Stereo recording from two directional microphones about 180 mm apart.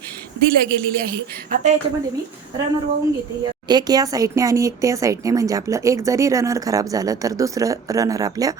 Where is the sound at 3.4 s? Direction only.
25° right (ahead or behind).